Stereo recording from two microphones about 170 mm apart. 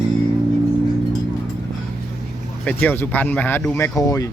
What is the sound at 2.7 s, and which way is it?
Speech, 10° left (ahead or behind).